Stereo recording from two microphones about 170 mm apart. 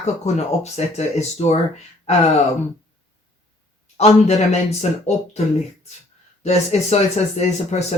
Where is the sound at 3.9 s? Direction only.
40° left (ahead or behind).